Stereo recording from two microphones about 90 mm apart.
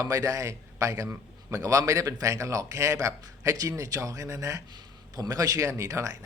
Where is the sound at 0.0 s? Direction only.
40° right (ahead or behind).